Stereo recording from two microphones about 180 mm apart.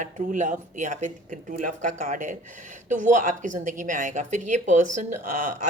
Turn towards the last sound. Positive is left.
turn(degrees=-45)  # may be behind; listen again after turning